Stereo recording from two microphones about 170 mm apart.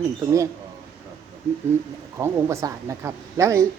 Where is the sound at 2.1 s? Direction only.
15° right (ahead or behind).